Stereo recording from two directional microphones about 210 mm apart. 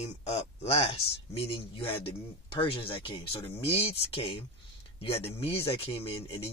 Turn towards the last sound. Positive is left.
turn(degrees=25)  # may be behind; listen again after turning